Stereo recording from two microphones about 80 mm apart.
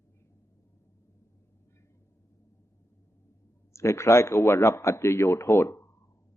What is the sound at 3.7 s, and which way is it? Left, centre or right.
A man's voice, left.